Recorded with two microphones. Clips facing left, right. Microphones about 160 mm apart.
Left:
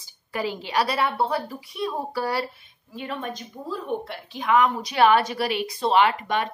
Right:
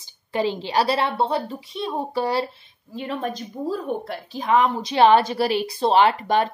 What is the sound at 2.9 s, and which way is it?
A woman's voice, 35° right (ahead or behind).